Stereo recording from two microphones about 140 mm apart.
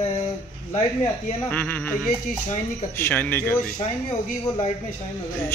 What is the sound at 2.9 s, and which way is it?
Speech, 15° left (ahead or behind).